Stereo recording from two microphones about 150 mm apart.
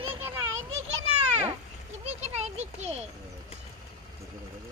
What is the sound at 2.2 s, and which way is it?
Speech, 45° right (ahead or behind).